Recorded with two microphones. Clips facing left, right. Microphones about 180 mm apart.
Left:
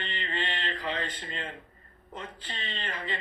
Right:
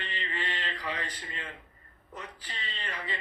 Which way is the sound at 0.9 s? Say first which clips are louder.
Left 3 dB; 25° left (ahead or behind).